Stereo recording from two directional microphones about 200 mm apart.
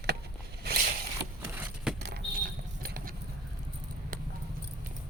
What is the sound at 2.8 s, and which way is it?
Vehicle, 45° right (ahead or behind).